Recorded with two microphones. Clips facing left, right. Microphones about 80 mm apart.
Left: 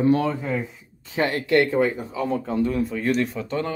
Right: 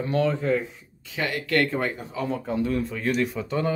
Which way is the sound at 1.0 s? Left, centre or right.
Left.